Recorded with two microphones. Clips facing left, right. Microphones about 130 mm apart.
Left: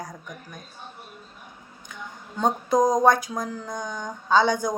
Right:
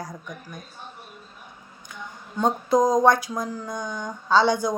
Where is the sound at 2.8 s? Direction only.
20° left (ahead or behind).